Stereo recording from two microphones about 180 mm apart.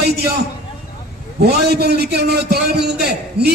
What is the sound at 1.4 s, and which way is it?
A man's voice, 60° right (ahead or behind).